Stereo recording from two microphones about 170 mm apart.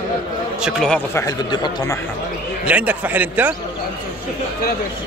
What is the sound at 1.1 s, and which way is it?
Speech, 25° left (ahead or behind).